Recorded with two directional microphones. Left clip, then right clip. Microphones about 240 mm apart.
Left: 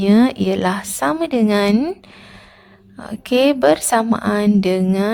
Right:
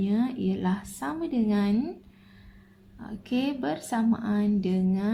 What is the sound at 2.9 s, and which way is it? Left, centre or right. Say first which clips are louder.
A woman's voice: left 15 dB; left.